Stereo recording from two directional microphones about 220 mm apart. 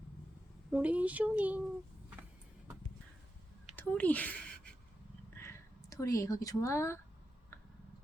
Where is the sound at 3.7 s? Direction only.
5° left (ahead or behind).